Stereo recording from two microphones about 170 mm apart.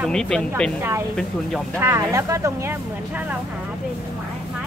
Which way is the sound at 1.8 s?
15° right (ahead or behind).